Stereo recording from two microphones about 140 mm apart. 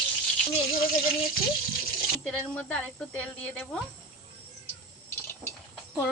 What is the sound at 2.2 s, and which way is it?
Speech, 5° left (ahead or behind).